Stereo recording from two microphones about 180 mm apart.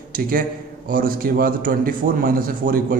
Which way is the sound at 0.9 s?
50° right (ahead or behind).